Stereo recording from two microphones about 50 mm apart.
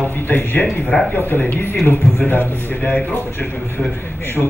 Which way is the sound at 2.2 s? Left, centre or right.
Left.